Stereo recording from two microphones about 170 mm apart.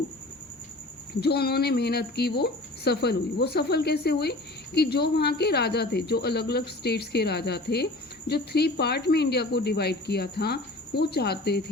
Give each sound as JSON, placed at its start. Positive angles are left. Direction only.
{"t": 1.2, "sound": "speech", "side_deg": 70}